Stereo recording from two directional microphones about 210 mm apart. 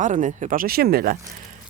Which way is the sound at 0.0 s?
35° right (ahead or behind).